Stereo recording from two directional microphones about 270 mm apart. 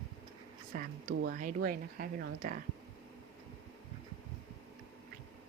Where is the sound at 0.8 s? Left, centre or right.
Right.